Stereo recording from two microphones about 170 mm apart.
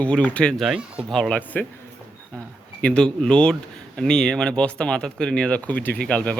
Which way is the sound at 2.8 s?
5° left (ahead or behind).